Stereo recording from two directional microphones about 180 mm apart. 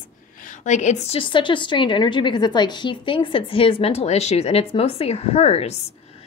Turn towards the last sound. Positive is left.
turn(degrees=35)  # may be behind; listen again after turning